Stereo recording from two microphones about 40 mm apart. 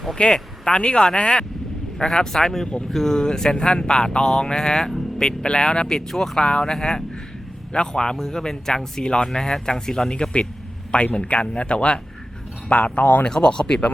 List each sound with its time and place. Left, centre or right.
0.3 s speech: left
2.3 s speech: centre
6.1 s speech: centre
10.9 s speech: left
12.7 s speech: left
13.2 s speech: left